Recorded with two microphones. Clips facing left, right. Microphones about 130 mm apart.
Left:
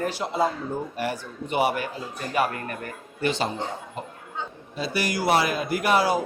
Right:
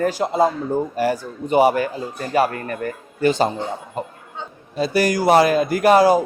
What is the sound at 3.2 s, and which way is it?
A man's voice, 45° right (ahead or behind).